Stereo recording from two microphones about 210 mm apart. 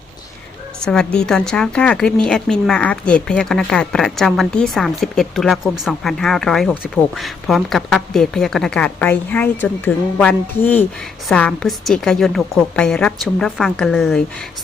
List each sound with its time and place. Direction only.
0.9 s a woman's voice: 5° left (ahead or behind)